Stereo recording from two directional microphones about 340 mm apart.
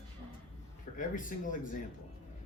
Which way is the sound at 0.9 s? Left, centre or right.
Left.